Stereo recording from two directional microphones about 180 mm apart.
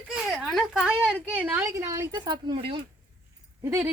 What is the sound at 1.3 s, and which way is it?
A child's voice, 10° right (ahead or behind).